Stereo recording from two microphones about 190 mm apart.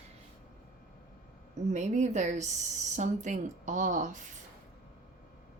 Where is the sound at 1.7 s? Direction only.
40° right (ahead or behind).